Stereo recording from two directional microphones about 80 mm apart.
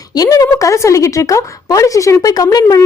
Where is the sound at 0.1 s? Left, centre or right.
Left.